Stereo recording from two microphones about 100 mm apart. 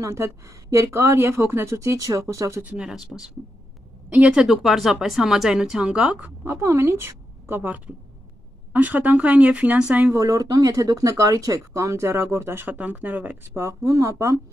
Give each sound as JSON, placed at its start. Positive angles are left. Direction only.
{"t": 0.0, "sound": "speech", "side_deg": -30}
{"t": 2.6, "sound": "speech", "side_deg": -15}
{"t": 2.9, "sound": "speech", "side_deg": -5}
{"t": 10.1, "sound": "speech", "side_deg": -35}